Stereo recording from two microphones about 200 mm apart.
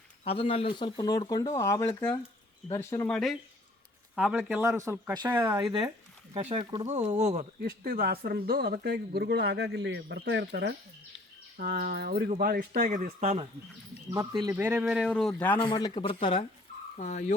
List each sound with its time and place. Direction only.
0.3 s speech: 30° left (ahead or behind)
3.1 s speech: centre (ahead or behind)
6.3 s speech: 25° right (ahead or behind)
7.6 s speech: 50° right (ahead or behind); by 13.5 s 30° right (ahead or behind)
14.1 s speech: 15° right (ahead or behind)
14.6 s speech: 5° right (ahead or behind)
15.6 s speech: 20° left (ahead or behind)
17.0 s speech: 40° left (ahead or behind)